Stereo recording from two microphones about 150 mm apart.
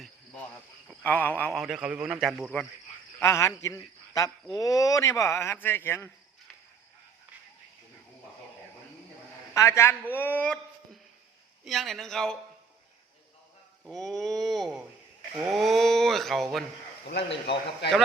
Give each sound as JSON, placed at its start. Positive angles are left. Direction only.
{"t": 1.0, "sound": "speech", "side_deg": 10}
{"t": 3.2, "sound": "speech", "side_deg": 20}
{"t": 9.6, "sound": "speech", "side_deg": 20}
{"t": 11.6, "sound": "speech", "side_deg": 0}
{"t": 13.8, "sound": "speech", "side_deg": 0}
{"t": 17.1, "sound": "speech", "side_deg": 90}